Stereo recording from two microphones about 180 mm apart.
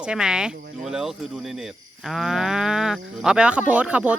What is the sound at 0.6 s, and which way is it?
Speech, 50° right (ahead or behind).